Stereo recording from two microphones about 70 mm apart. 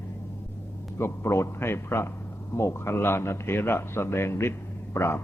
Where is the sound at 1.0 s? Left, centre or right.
Left.